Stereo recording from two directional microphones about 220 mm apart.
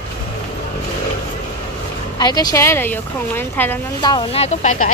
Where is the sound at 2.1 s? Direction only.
20° left (ahead or behind).